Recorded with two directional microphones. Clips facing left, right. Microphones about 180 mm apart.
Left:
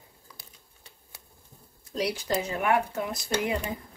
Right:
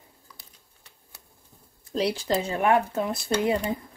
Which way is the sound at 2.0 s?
30° right (ahead or behind).